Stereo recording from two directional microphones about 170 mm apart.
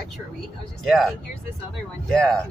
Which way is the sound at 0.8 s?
Centre (ahead or behind).